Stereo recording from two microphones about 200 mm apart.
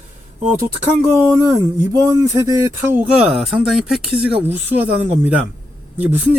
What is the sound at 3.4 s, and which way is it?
Speech, centre (ahead or behind).